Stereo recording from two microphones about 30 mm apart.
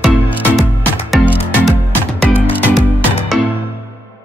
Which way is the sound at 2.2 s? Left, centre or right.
Left.